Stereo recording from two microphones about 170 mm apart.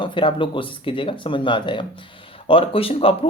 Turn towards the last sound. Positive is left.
turn(degrees=35)  # may be behind; listen again after turning